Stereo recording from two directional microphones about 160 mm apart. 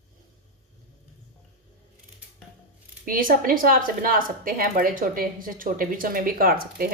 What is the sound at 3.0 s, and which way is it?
Speech, 60° right (ahead or behind).